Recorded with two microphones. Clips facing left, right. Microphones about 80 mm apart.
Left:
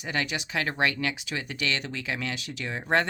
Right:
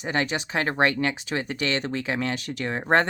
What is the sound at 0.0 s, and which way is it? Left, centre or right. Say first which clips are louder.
Speech: right 4 dB; right.